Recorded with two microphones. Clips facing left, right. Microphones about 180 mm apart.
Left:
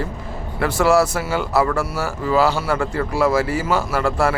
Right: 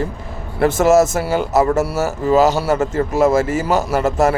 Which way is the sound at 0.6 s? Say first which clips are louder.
Right 4 dB; 45° right (ahead or behind).